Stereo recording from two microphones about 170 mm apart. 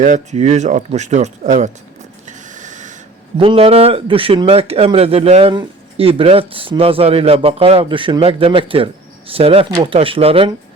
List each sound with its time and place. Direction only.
0.0 s speech: 45° right (ahead or behind)
2.2 s printer: 45° right (ahead or behind)
3.3 s a man's voice: 30° right (ahead or behind)